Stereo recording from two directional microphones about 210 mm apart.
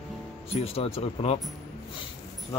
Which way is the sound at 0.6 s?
30° left (ahead or behind).